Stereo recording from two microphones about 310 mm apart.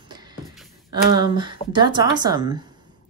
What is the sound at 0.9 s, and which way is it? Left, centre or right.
Speech, centre.